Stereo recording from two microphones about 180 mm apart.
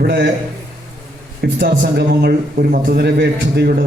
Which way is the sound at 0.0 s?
55° right (ahead or behind).